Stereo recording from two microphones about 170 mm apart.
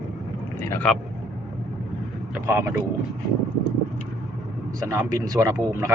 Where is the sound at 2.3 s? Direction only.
15° right (ahead or behind).